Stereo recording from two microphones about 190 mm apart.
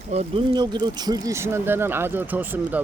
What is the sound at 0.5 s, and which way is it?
Speech, 20° right (ahead or behind).